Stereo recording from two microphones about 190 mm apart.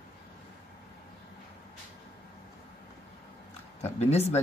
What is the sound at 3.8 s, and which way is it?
Speech, 35° left (ahead or behind).